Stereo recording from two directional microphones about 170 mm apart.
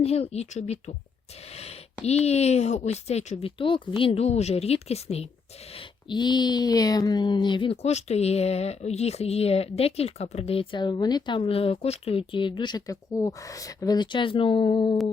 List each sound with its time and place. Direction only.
0.0 s speech: 40° left (ahead or behind)
1.5 s a sound: 35° left (ahead or behind)
2.0 s speech: 40° left (ahead or behind)
5.7 s speech: 25° left (ahead or behind)